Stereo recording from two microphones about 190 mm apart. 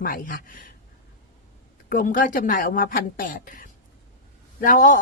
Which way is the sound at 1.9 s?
45° left (ahead or behind).